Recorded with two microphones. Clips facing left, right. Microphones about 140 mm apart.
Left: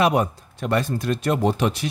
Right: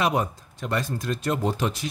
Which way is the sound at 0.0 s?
65° left (ahead or behind).